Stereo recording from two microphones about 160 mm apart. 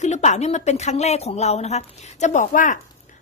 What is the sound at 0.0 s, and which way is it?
A woman's voice, 45° left (ahead or behind).